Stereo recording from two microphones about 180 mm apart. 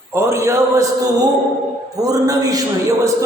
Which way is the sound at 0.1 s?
15° right (ahead or behind).